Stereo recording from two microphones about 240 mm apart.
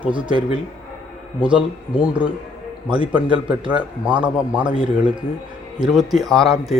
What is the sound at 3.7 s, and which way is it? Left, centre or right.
A man's voice, centre.